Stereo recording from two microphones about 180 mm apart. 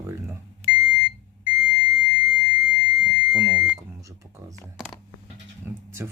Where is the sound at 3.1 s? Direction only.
5° right (ahead or behind).